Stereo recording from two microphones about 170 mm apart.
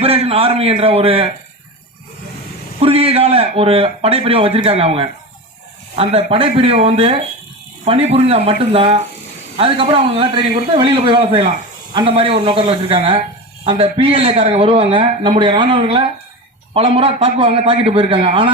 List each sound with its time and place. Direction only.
0.0 s a man's voice: 35° right (ahead or behind)
2.8 s speech: 35° right (ahead or behind)